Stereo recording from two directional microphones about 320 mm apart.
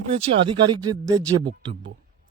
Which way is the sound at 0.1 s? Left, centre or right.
Centre.